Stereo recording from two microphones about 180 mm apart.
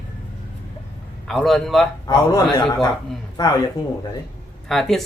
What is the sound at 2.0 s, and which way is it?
A man's voice, 20° left (ahead or behind).